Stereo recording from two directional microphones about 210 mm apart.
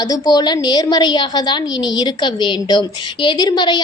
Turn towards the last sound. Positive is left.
turn(degrees=20)  # may be behind; listen again after turning